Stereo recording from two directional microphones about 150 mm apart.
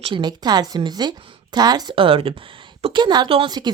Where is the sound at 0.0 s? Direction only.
30° right (ahead or behind).